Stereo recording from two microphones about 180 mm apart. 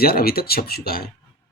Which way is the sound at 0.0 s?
55° left (ahead or behind).